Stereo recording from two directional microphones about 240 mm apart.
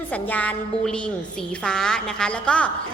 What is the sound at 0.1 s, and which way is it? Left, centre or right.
A woman's voice, centre.